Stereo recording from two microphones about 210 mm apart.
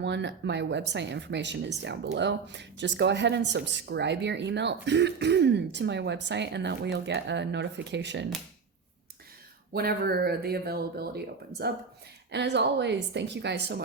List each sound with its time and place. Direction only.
0.0 s speech: 55° right (ahead or behind)
9.7 s speech: 45° right (ahead or behind)